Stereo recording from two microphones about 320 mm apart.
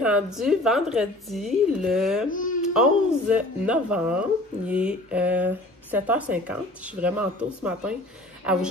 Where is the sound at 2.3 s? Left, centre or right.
Left.